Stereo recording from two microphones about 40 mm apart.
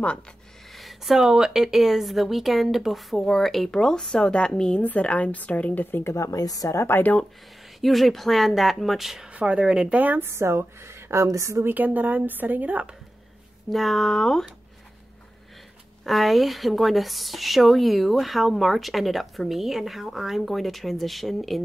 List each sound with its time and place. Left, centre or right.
0.7 s a sound: centre
1.3 s speech: centre
3.2 s speech: centre
4.8 s a woman's voice: left
5.9 s speech: left
7.8 s speech: centre
9.3 s speech: right
9.9 s a woman's voice: right
10.2 s a woman's voice: right
11.6 s a woman's voice: right
13.7 s speech: centre
16.0 s speech: centre